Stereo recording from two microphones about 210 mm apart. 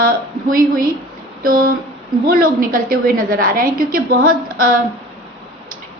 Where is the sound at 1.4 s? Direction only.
45° right (ahead or behind).